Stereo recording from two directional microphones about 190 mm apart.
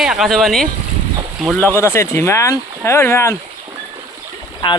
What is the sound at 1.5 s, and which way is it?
Speech, 10° left (ahead or behind).